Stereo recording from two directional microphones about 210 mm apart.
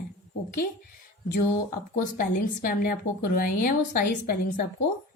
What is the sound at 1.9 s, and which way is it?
A woman's voice, 40° left (ahead or behind).